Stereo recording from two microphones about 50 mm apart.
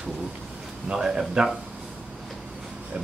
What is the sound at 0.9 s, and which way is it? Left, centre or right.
Speech, centre.